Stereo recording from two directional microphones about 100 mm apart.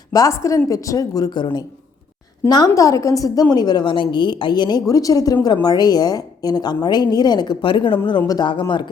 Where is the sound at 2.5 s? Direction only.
40° left (ahead or behind).